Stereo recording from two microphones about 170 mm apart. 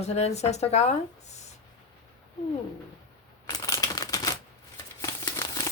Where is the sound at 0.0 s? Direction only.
40° left (ahead or behind).